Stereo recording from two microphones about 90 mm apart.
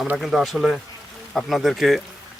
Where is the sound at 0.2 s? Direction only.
Centre (ahead or behind).